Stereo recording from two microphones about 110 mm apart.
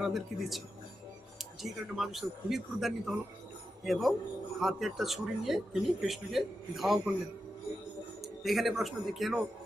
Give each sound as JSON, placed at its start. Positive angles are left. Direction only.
{"t": 0.0, "sound": "speech", "side_deg": 0}
{"t": 1.6, "sound": "speech", "side_deg": 0}
{"t": 8.2, "sound": "a man's voice", "side_deg": 0}